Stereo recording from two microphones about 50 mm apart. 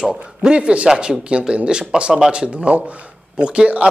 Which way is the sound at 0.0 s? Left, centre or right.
Centre.